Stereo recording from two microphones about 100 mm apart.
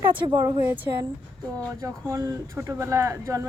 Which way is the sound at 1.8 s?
35° right (ahead or behind).